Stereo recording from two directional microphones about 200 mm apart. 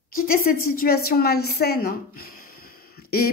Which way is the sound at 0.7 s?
50° left (ahead or behind).